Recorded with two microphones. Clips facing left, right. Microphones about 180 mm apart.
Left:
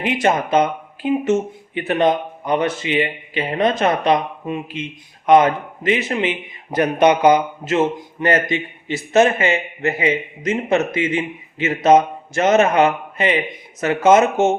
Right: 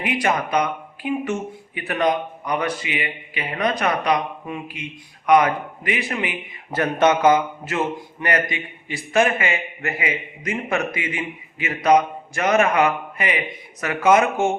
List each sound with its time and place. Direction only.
0.0 s speech: 25° left (ahead or behind)